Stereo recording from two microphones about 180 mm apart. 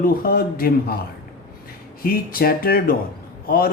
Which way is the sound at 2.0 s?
55° left (ahead or behind).